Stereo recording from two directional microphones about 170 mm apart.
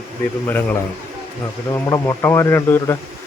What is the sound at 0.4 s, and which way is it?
A man's voice, 10° left (ahead or behind).